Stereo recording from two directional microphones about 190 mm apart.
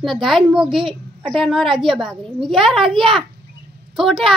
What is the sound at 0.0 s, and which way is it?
A child's voice, centre (ahead or behind).